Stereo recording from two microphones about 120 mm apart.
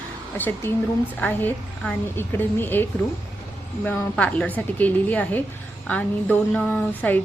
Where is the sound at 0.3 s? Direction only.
15° left (ahead or behind).